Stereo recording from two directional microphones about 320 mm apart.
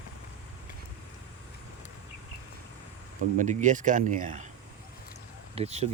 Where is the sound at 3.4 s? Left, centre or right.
Right.